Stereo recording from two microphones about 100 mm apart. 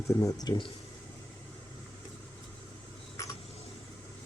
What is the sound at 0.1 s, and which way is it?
Speech, 35° left (ahead or behind).